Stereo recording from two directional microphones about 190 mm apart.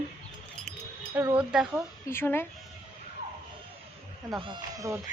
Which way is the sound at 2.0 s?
10° left (ahead or behind).